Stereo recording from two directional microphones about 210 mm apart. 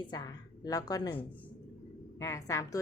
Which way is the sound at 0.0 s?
20° left (ahead or behind).